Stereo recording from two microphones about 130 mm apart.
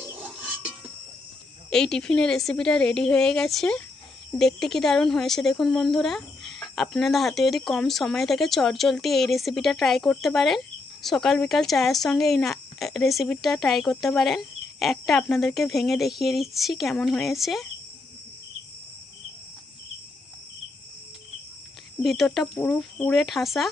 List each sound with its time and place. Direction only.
0.2 s a sound: 10° right (ahead or behind)
1.7 s speech: 5° left (ahead or behind)
22.0 s speech: centre (ahead or behind)